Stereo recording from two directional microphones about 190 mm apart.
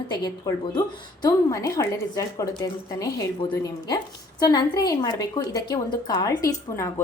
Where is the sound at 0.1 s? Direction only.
20° left (ahead or behind).